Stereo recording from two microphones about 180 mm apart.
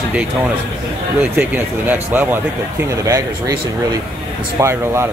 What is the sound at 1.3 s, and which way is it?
Speech, 10° right (ahead or behind).